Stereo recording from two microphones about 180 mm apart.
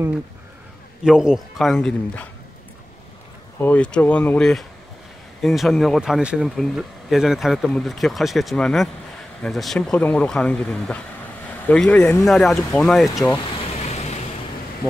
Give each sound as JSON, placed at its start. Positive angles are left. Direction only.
{"t": 1.0, "sound": "speech", "side_deg": -5}
{"t": 3.6, "sound": "speech", "side_deg": 5}
{"t": 13.8, "sound": "vehicle", "side_deg": 40}